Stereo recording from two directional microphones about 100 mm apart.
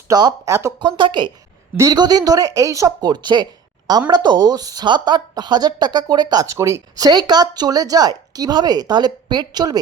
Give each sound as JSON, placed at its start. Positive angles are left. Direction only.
{"t": 0.1, "sound": "speech", "side_deg": -40}
{"t": 0.8, "sound": "speech", "side_deg": -55}
{"t": 1.7, "sound": "speech", "side_deg": -30}